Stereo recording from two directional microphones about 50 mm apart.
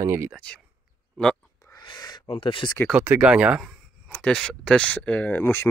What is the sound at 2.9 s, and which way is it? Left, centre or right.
Speech, right.